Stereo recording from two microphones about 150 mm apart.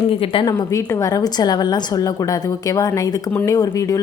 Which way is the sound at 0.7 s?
20° left (ahead or behind).